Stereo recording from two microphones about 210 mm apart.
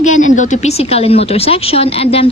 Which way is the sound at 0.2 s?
35° left (ahead or behind).